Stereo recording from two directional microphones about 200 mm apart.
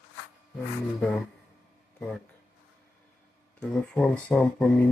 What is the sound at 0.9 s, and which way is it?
Speech, 5° left (ahead or behind).